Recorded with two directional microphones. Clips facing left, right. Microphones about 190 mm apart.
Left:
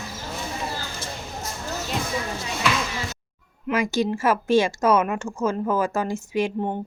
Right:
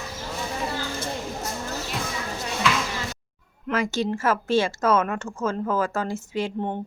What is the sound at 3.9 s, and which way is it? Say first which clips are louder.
Speech: left 2 dB; 10° left (ahead or behind).